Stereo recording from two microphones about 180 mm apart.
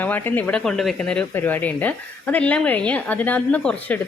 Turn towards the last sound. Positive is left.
turn(degrees=10)  # may be behind; listen again after turning